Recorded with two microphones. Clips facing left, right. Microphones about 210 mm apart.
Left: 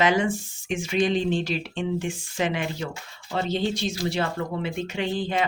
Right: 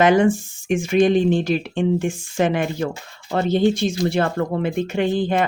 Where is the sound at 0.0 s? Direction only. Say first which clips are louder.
Right 7 dB; 50° right (ahead or behind).